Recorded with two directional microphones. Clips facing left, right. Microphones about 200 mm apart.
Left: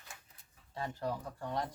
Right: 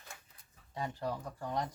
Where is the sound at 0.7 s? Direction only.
15° right (ahead or behind).